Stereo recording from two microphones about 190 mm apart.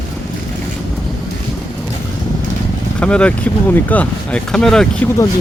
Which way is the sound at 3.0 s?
5° left (ahead or behind).